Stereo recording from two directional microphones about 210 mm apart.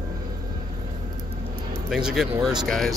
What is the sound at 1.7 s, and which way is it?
Music, centre (ahead or behind).